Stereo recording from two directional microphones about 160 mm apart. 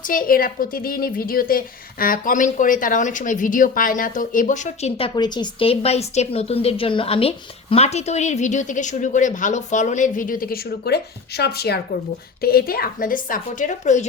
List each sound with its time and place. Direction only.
0.0 s speech: 60° left (ahead or behind); by 11.8 s 90° left
12.4 s a woman's voice: 70° left (ahead or behind); by 14.1 s 50° left (ahead or behind)